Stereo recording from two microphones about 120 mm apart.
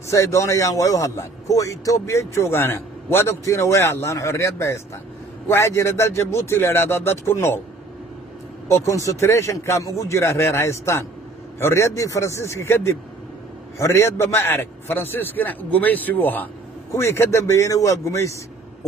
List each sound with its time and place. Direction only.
0.1 s a man's voice: 25° left (ahead or behind)
8.6 s a man's voice: 25° left (ahead or behind)